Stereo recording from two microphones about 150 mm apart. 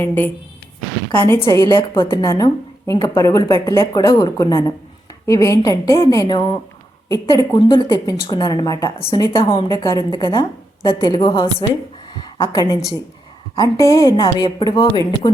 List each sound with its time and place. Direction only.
0.0 s speech: 15° left (ahead or behind)
1.5 s a woman's voice: 20° left (ahead or behind)